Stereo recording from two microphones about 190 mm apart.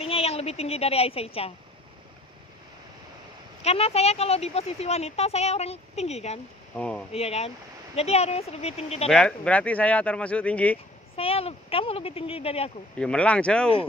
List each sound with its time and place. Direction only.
0.0 s a woman's voice: 30° left (ahead or behind)
3.6 s speech: 35° left (ahead or behind)
6.8 s speech: 5° left (ahead or behind)
7.1 s speech: 35° left (ahead or behind)
9.1 s speech: 5° left (ahead or behind)
11.1 s speech: 30° left (ahead or behind)
13.0 s speech: 5° left (ahead or behind)